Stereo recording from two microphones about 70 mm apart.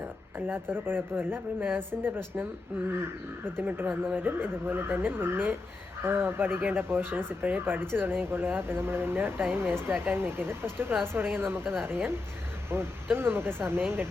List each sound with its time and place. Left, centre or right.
0.3 s speech: right